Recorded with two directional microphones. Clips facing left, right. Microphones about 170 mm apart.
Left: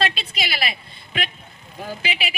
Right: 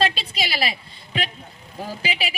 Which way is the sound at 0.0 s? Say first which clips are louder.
Right 2 dB; 35° right (ahead or behind).